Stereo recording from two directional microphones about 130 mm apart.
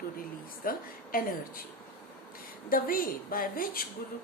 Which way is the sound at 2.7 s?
90° left.